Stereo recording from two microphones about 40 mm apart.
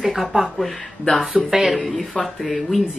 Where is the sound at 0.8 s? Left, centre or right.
Centre.